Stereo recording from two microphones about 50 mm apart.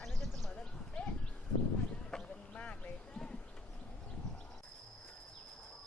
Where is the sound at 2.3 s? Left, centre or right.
Left.